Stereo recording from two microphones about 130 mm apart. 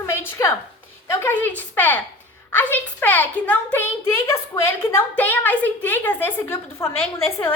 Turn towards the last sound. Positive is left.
turn(degrees=20)  # may be behind; listen again after turning